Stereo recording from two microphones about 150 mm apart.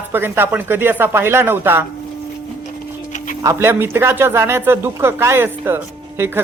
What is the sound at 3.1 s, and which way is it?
Music, 60° left (ahead or behind).